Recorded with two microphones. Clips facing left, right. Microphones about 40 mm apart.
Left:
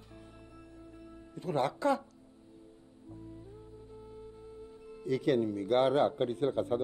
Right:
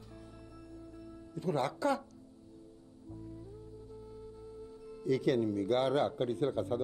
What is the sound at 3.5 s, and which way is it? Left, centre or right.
Music, left.